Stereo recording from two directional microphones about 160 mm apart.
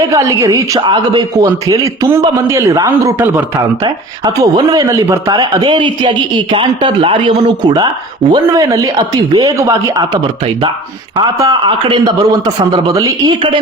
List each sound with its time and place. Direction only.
0.1 s a man's voice: 20° right (ahead or behind)
0.8 s a man's voice: 30° right (ahead or behind)
1.7 s a man's voice: 20° right (ahead or behind)
11.3 s a man's voice: 25° right (ahead or behind)